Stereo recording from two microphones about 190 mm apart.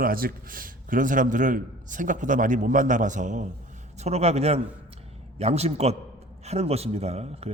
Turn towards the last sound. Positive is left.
turn(degrees=-35)  # may be behind; listen again after turning